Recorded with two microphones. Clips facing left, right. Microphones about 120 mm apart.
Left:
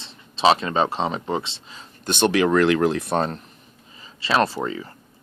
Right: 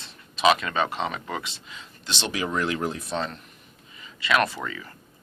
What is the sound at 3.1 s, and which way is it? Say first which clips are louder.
Speech: left 7 dB; 45° left (ahead or behind).